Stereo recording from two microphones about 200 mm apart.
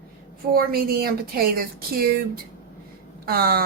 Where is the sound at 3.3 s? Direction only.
50° right (ahead or behind).